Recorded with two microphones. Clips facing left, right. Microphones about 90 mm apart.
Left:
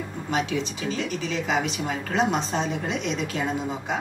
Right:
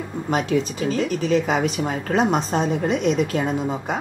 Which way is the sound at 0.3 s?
45° right (ahead or behind).